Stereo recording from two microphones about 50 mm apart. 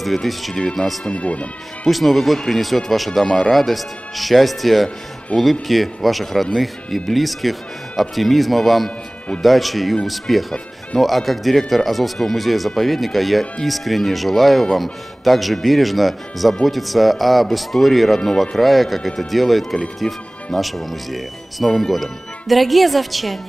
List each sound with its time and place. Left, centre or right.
0.0 s speech: centre
1.1 s speech: left
1.9 s speech: centre